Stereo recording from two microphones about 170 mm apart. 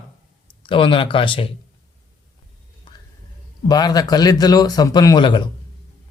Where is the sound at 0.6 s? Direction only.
30° left (ahead or behind).